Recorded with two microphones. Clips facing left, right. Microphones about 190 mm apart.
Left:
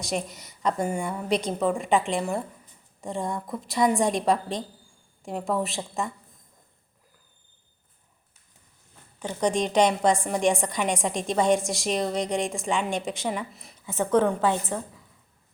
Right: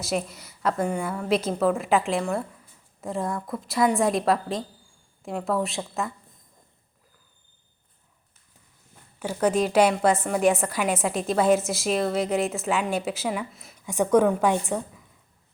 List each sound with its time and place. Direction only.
0.0 s a woman's voice: 5° right (ahead or behind)
9.1 s a woman's voice: 5° right (ahead or behind)
13.8 s a woman's voice: 15° right (ahead or behind)